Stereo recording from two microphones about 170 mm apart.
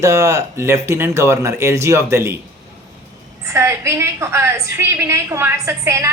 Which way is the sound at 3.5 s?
15° right (ahead or behind).